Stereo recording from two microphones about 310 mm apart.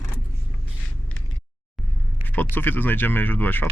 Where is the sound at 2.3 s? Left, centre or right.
Centre.